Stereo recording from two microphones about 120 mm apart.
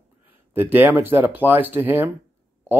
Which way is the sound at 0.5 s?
15° right (ahead or behind).